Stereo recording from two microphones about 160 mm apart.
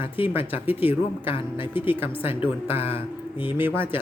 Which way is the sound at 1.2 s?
35° left (ahead or behind).